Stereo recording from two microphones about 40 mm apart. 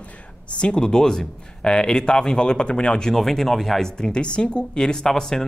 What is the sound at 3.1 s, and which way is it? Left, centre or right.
Speech, centre.